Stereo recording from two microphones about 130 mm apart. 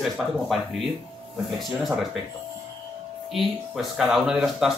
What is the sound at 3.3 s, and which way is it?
Speech, 5° right (ahead or behind).